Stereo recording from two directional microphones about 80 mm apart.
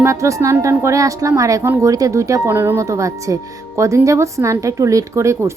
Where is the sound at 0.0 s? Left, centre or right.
Right.